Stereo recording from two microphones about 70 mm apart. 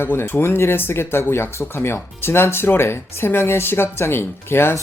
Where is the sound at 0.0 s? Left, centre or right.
Left.